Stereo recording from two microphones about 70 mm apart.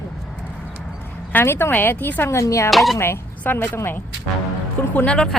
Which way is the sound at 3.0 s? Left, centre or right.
Left.